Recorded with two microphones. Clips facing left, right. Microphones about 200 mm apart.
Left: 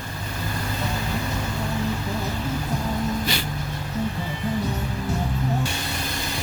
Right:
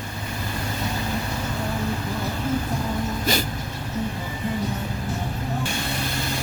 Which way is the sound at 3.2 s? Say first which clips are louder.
Right 3 dB; 45° right (ahead or behind).